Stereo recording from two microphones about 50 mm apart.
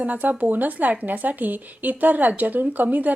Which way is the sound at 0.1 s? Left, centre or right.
Right.